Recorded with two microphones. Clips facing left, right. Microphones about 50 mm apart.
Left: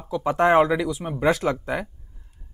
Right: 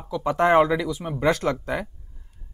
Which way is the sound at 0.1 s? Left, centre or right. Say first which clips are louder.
Even; centre.